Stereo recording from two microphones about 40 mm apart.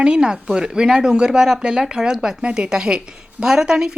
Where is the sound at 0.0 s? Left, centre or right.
Right.